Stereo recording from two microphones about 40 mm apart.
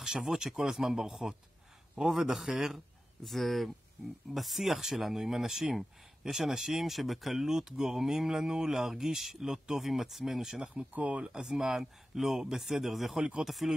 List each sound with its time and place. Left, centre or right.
0.0 s a sound: centre
0.6 s speech: centre
2.2 s speech: centre
3.3 s speech: centre
10.6 s speech: right
11.3 s speech: centre